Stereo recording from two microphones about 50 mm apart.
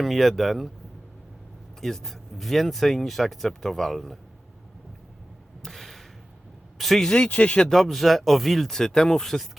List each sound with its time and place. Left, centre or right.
0.0 s speech: centre
1.8 s speech: centre
5.6 s a sound: centre
6.7 s speech: centre
7.2 s speech: left
7.6 s speech: centre